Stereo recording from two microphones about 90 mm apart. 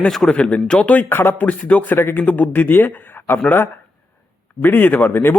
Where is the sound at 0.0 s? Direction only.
10° left (ahead or behind).